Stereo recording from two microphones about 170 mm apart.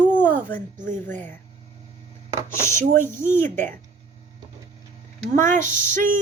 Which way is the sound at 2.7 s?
50° right (ahead or behind).